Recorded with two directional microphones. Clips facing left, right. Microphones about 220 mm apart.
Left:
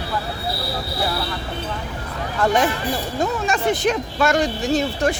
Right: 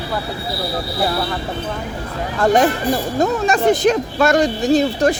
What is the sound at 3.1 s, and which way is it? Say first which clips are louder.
Speech: right 4 dB; 40° right (ahead or behind).